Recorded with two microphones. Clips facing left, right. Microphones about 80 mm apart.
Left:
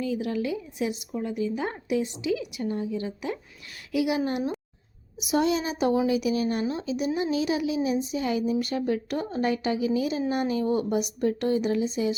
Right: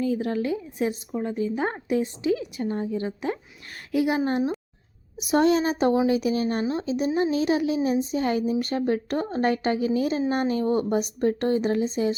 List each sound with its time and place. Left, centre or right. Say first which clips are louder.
0.0 s speech: right 3 dB; right
5.2 s speech: right 4 dB; right